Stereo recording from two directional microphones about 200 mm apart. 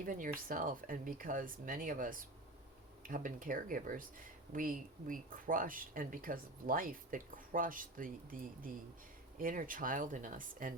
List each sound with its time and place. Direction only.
0.0 s speech: 45° right (ahead or behind)